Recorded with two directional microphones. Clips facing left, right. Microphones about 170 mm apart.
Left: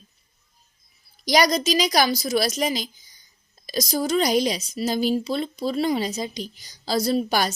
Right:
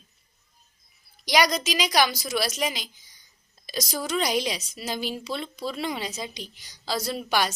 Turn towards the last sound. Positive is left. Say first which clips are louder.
# left 5 dB
turn(degrees=40)  # may be behind; listen again after turning